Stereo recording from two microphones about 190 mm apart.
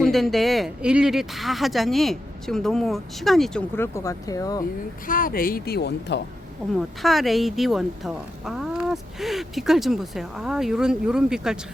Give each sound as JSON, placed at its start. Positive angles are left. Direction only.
{"t": 0.0, "sound": "speech", "side_deg": 0}
{"t": 3.8, "sound": "speech", "side_deg": 15}
{"t": 5.0, "sound": "speech", "side_deg": 45}
{"t": 7.0, "sound": "speech", "side_deg": 0}